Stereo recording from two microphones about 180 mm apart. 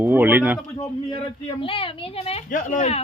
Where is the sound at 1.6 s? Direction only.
30° left (ahead or behind).